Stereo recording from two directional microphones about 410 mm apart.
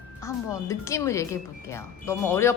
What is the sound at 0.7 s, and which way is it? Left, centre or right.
Speech, centre.